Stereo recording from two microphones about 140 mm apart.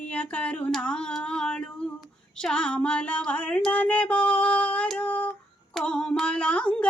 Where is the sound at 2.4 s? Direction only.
5° left (ahead or behind).